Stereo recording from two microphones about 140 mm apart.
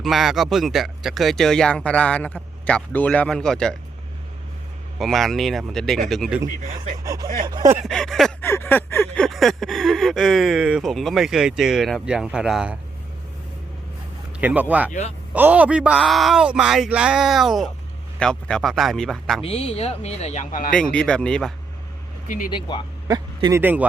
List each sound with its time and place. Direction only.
0.0 s speech: centre (ahead or behind)
4.9 s speech: centre (ahead or behind)
7.0 s speech: 25° right (ahead or behind)
7.9 s speech: 5° left (ahead or behind)
8.4 s speech: 20° left (ahead or behind)
9.1 s speech: 5° left (ahead or behind)
14.3 s speech: 10° right (ahead or behind)
19.4 s speech: 45° left (ahead or behind); by 20.7 s 75° left (ahead or behind)
20.7 s speech: 10° left (ahead or behind)
22.7 s speech: 30° left (ahead or behind)
23.0 s speech: 25° right (ahead or behind)
23.6 s speech: 15° right (ahead or behind)